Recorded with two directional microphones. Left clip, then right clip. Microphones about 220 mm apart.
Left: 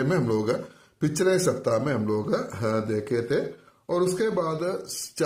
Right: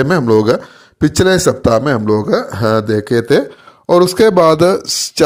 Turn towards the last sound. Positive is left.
turn(degrees=-45)  # may be behind; listen again after turning